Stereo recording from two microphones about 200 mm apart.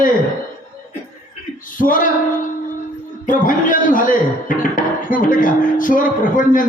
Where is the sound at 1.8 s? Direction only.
40° left (ahead or behind).